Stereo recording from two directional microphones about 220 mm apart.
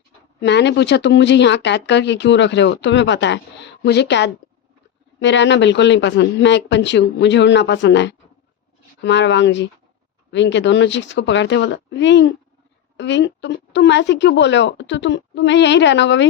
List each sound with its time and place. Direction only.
0.4 s speech: 50° left (ahead or behind)